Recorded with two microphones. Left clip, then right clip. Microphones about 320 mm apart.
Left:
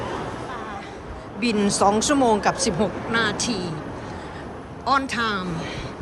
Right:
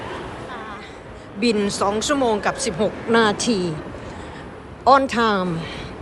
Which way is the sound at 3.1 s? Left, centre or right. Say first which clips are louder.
Right 8 dB; centre.